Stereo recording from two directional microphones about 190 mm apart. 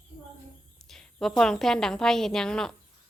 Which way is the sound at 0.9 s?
Centre (ahead or behind).